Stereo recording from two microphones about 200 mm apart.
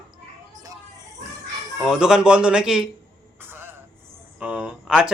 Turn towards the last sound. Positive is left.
turn(degrees=-5)  # may be behind; listen again after turning